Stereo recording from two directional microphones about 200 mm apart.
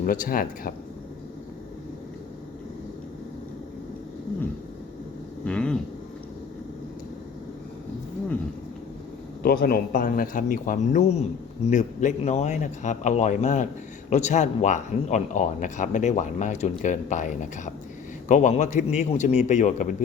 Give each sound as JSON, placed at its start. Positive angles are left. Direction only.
{"t": 0.0, "sound": "speech", "side_deg": 45}
{"t": 5.5, "sound": "a sound", "side_deg": 5}
{"t": 9.4, "sound": "a man's voice", "side_deg": 50}